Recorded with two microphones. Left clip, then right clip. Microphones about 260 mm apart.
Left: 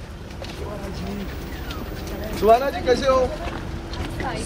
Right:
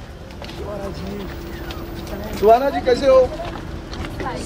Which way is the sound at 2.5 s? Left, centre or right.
Right.